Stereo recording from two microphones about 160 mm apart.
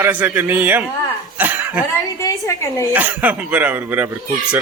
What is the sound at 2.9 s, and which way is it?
A man's voice, 10° right (ahead or behind).